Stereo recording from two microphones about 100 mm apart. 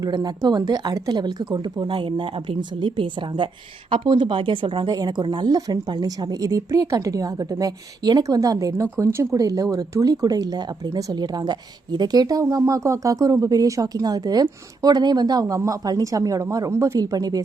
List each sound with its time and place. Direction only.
0.0 s a woman's voice: 40° right (ahead or behind)